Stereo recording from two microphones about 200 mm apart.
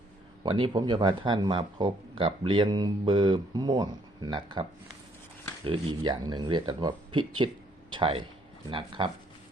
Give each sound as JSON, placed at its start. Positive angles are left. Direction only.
{"t": 0.4, "sound": "speech", "side_deg": -25}
{"t": 5.6, "sound": "speech", "side_deg": -25}